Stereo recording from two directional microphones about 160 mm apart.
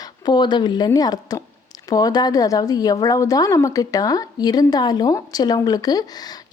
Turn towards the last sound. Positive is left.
turn(degrees=25)  # may be behind; listen again after turning